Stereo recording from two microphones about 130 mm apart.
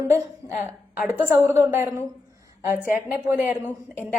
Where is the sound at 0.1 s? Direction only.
20° right (ahead or behind).